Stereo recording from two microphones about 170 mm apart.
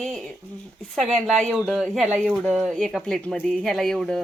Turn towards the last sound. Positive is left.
turn(degrees=0)  # may be behind; listen again after turning